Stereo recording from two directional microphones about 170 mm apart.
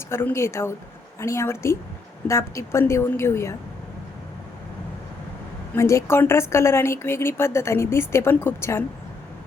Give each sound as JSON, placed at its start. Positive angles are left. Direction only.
{"t": 0.1, "sound": "a woman's voice", "side_deg": 15}
{"t": 5.7, "sound": "a woman's voice", "side_deg": 15}